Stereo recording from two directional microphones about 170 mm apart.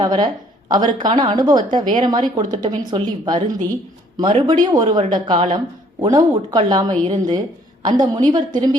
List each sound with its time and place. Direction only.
0.0 s a woman's voice: 25° right (ahead or behind)